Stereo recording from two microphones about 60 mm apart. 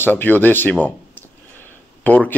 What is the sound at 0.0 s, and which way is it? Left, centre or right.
Speech, left.